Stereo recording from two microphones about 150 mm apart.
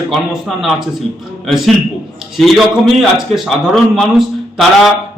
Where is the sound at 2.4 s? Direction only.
Centre (ahead or behind).